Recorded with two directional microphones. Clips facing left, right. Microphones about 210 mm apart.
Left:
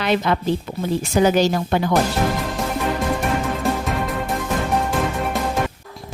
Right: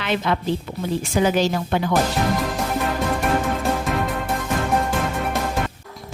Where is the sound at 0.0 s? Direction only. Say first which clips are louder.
Left 3 dB; 40° left (ahead or behind).